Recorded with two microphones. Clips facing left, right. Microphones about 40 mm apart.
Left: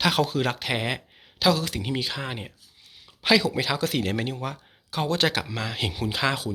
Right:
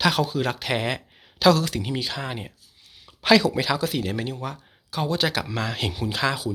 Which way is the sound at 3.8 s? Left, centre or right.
Left.